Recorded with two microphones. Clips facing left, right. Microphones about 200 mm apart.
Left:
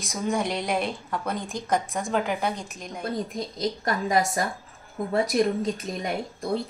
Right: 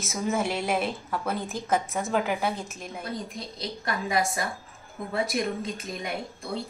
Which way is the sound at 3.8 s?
45° left (ahead or behind).